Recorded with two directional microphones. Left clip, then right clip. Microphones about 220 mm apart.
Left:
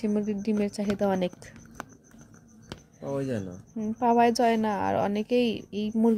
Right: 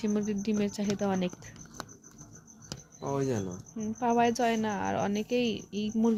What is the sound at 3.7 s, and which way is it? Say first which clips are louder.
A woman's voice: left 5 dB; 20° left (ahead or behind).